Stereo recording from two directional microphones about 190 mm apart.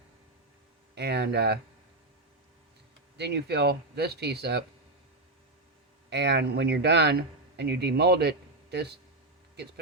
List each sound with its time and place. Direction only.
0.9 s speech: 60° right (ahead or behind)
3.2 s speech: 60° right (ahead or behind)
6.1 s speech: 65° right (ahead or behind)